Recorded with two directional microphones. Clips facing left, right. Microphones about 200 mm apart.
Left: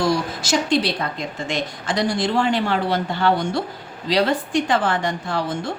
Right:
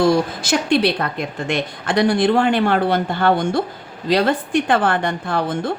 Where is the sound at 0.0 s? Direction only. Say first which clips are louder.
Right 5 dB; 55° right (ahead or behind).